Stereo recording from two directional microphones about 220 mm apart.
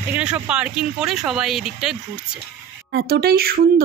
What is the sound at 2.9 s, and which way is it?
Speech, 45° right (ahead or behind).